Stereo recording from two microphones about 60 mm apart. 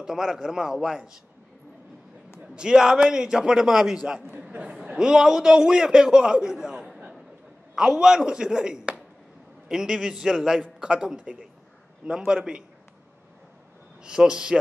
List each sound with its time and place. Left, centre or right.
0.0 s a man's voice: centre
2.4 s a man's voice: centre
4.3 s a sound: right
4.6 s a man's voice: centre
14.0 s a man's voice: centre